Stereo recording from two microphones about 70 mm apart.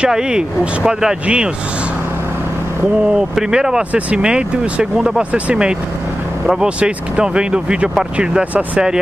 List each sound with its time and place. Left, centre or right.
0.0 s speech: centre
3.3 s speech: centre